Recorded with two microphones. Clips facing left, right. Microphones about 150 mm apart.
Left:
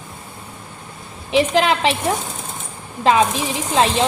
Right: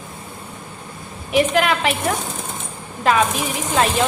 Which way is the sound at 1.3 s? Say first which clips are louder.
Left 1 dB; 25° left (ahead or behind).